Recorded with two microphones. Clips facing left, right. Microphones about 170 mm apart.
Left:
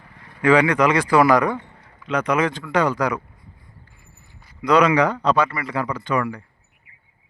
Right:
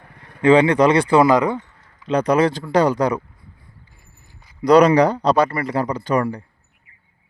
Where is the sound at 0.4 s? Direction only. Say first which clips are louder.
Right 3 dB; 25° right (ahead or behind).